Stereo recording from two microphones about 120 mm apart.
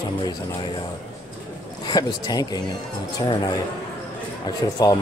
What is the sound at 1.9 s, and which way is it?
Speech, 35° left (ahead or behind).